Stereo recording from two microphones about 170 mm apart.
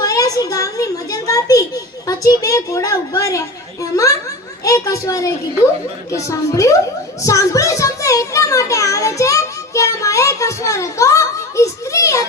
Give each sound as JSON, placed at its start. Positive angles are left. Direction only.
{"t": 0.0, "sound": "a child's voice", "side_deg": 20}
{"t": 4.6, "sound": "a woman's voice", "side_deg": 20}